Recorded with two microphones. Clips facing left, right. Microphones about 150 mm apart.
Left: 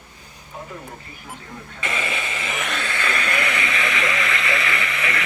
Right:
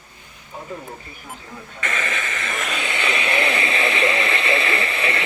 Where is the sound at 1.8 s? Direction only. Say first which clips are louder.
Even; 15° left (ahead or behind).